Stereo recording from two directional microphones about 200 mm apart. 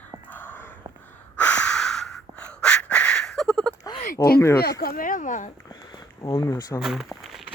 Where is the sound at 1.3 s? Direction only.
5° left (ahead or behind).